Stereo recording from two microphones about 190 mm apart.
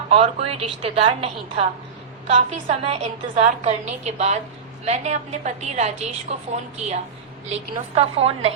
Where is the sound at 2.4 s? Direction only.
35° right (ahead or behind).